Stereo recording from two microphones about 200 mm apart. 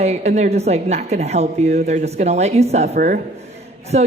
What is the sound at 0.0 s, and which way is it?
A man's voice, 35° right (ahead or behind).